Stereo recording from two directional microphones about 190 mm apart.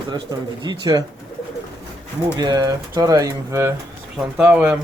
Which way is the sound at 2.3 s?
20° right (ahead or behind).